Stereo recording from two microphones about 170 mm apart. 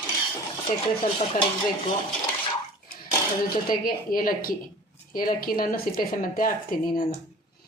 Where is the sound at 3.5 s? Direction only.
55° left (ahead or behind).